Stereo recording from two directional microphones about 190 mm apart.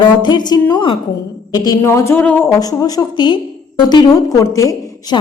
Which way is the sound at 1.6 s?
15° left (ahead or behind).